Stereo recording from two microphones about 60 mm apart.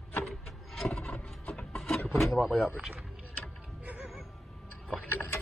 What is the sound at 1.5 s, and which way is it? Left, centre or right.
Wood, centre.